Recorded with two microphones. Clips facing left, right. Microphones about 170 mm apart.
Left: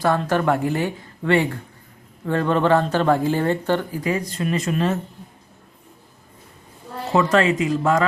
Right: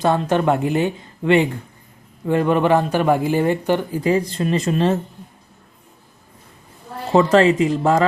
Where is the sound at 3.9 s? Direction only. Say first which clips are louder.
Right 5 dB; 30° right (ahead or behind).